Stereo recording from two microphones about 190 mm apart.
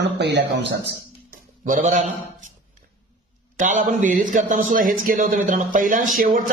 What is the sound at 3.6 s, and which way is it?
A man's voice, 40° right (ahead or behind).